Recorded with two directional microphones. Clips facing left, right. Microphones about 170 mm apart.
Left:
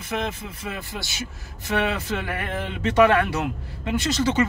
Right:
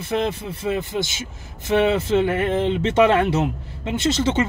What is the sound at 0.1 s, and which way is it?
Speech, 30° right (ahead or behind).